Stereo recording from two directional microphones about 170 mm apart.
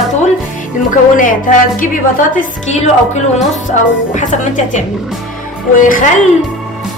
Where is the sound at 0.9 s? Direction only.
50° left (ahead or behind).